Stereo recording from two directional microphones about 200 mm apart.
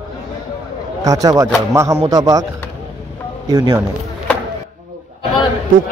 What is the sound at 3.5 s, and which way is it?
Speech, 20° right (ahead or behind).